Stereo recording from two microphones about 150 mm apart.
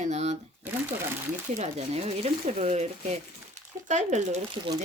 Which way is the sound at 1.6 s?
50° right (ahead or behind).